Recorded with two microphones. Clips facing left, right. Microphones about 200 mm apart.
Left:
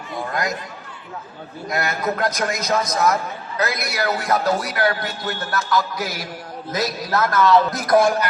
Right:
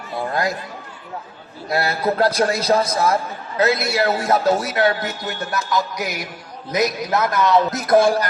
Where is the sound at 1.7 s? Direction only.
30° right (ahead or behind).